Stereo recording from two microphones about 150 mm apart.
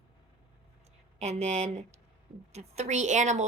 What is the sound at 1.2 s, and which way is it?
A woman's voice, 45° right (ahead or behind).